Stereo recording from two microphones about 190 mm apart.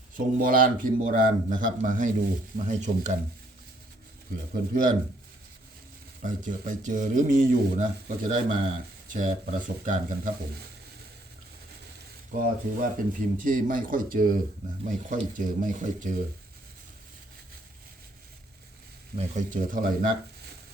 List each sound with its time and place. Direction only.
0.3 s speech: 45° right (ahead or behind)
4.7 s speech: 45° right (ahead or behind)
6.2 s speech: 40° right (ahead or behind)
12.3 s speech: 45° right (ahead or behind)
19.1 s speech: 40° right (ahead or behind)